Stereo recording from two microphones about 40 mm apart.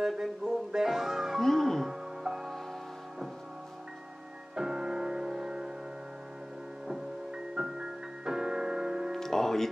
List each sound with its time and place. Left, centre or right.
0.0 s speech: centre
0.7 s music: centre
1.4 s music: centre
1.9 s music: centre
4.6 s music: centre
6.9 s music: centre
9.2 s music: centre